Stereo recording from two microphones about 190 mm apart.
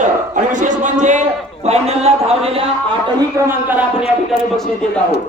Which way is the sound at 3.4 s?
10° right (ahead or behind).